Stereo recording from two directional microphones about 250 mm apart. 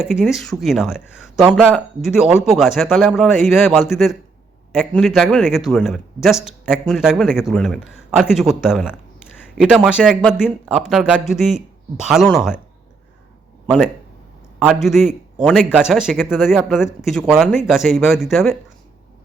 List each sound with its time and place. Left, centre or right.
0.0 s speech: centre
13.7 s speech: centre